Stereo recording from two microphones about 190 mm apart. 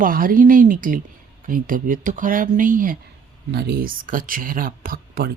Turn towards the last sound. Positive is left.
turn(degrees=-50)  # may be behind; listen again after turning